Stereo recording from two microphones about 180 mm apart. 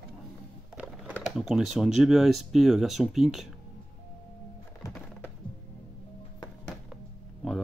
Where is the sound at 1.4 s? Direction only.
Centre (ahead or behind).